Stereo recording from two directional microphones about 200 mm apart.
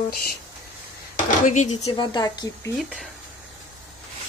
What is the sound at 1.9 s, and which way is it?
Speech, 20° left (ahead or behind).